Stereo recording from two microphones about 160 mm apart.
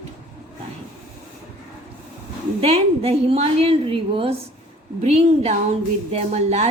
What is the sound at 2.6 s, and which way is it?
A woman's voice, 40° right (ahead or behind).